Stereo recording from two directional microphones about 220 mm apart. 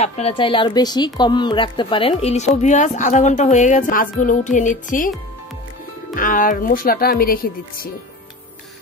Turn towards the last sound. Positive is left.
turn(degrees=40)  # may be behind; listen again after turning